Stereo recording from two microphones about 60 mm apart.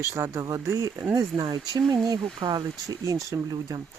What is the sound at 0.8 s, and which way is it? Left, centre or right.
Speech, right.